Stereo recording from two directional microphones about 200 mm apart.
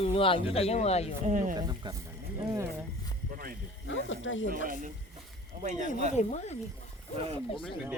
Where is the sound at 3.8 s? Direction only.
75° left (ahead or behind).